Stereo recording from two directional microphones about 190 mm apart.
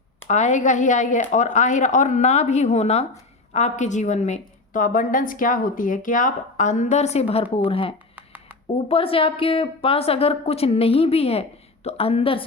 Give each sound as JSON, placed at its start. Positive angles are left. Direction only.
{"t": 0.3, "sound": "a woman's voice", "side_deg": 40}
{"t": 8.1, "sound": "a sound", "side_deg": -10}
{"t": 8.9, "sound": "a woman's voice", "side_deg": 30}